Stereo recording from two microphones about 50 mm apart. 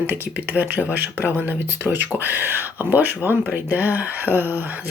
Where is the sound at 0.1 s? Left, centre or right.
Right.